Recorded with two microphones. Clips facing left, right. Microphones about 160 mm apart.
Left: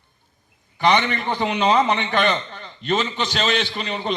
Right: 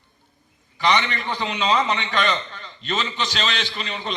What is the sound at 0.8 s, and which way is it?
A man's voice, 50° left (ahead or behind).